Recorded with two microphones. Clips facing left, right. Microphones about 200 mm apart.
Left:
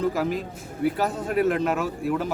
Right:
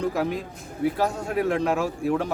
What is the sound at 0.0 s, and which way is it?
A man's voice, centre (ahead or behind).